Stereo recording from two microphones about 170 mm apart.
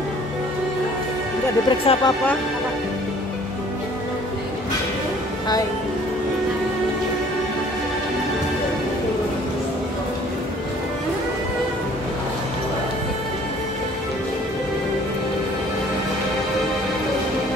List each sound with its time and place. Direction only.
1.7 s speech: 30° left (ahead or behind)